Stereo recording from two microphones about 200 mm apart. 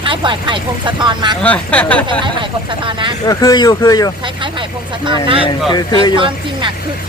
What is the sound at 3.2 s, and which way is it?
Speech, 20° left (ahead or behind).